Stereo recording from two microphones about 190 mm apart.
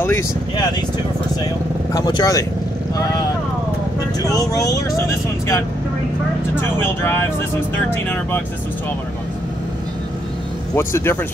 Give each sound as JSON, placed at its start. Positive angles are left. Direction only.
{"t": 0.0, "sound": "speech", "side_deg": 15}
{"t": 2.0, "sound": "speech", "side_deg": 20}
{"t": 4.3, "sound": "speech", "side_deg": 15}
{"t": 7.9, "sound": "speech", "side_deg": 10}
{"t": 10.7, "sound": "speech", "side_deg": 15}